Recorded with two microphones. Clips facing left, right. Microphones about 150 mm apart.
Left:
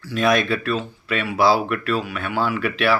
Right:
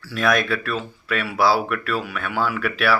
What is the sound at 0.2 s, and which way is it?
Speech, 25° left (ahead or behind).